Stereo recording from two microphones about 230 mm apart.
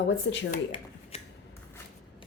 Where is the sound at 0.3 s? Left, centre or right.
Left.